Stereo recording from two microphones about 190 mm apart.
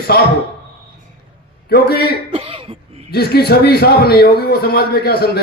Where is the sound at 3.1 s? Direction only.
55° left (ahead or behind).